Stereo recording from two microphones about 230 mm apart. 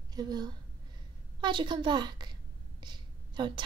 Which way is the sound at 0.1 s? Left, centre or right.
Centre.